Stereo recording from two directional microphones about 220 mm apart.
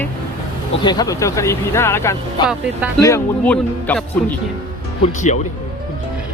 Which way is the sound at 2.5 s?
5° right (ahead or behind).